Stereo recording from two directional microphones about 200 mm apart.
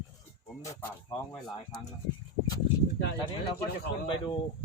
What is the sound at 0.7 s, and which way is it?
Speech, 10° left (ahead or behind).